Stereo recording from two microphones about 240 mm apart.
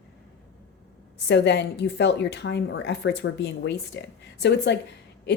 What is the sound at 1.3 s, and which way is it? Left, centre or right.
A woman's voice, left.